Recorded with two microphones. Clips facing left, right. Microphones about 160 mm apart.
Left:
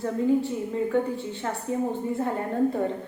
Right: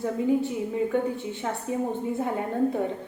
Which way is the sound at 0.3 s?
10° right (ahead or behind).